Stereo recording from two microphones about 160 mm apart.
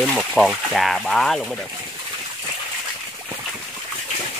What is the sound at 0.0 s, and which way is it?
Speech, 5° left (ahead or behind).